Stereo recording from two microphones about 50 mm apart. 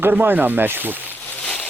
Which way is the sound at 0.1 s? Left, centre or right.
Right.